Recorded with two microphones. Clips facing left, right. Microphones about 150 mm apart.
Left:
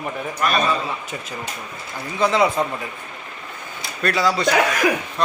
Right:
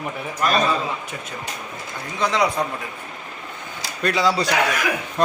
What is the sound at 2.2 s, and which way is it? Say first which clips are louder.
Speech: left 3 dB; centre (ahead or behind).